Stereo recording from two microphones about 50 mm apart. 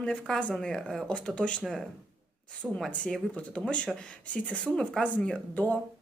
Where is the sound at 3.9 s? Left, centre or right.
Left.